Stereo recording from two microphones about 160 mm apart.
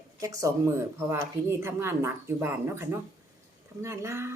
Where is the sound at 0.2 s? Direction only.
20° right (ahead or behind).